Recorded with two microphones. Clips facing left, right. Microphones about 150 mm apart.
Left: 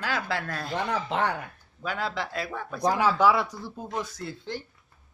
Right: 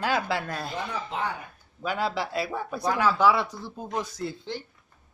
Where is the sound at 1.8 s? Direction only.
5° right (ahead or behind).